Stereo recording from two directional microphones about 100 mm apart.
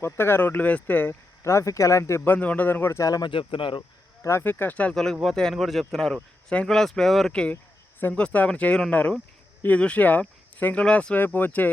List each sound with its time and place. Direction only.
0.0 s speech: 25° left (ahead or behind)
3.1 s speech: 40° left (ahead or behind)
3.3 s speech: 60° left (ahead or behind)
4.2 s speech: 25° left (ahead or behind); by 7.5 s 10° left (ahead or behind)
7.5 s a sound: 20° left (ahead or behind)
8.1 s speech: 15° left (ahead or behind)